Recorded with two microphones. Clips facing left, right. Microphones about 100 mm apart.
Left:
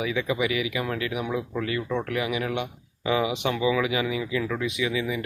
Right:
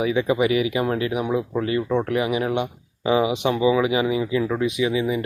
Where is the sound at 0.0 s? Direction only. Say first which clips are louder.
Right 6 dB; 30° right (ahead or behind).